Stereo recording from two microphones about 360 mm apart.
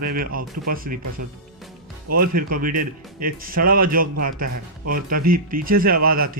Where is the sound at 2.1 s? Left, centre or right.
Right.